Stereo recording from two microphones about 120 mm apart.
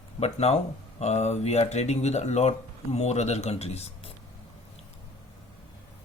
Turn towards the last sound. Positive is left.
turn(degrees=60)  # may be behind; listen again after turning